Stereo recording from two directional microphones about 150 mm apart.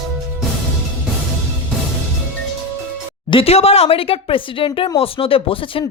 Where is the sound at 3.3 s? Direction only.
40° left (ahead or behind).